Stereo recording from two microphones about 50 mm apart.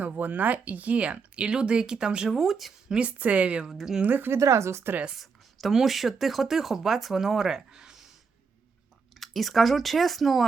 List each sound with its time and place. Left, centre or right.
0.2 s speech: right; by 2.7 s centre
3.1 s speech: right
3.7 s speech: centre
4.0 s a woman's voice: right
4.3 s speech: right
5.1 s speech: centre
9.2 s speech: centre